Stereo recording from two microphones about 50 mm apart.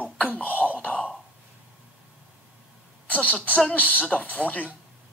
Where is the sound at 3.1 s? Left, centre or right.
Left.